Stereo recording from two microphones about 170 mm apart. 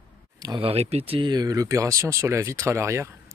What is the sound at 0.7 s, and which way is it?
Speech, 35° right (ahead or behind).